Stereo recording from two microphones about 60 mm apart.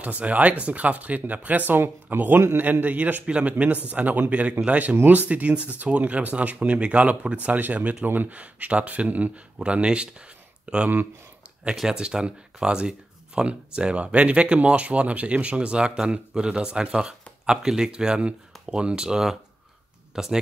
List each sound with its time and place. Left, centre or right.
0.0 s speech: right
10.6 s a sound: centre
11.7 s speech: centre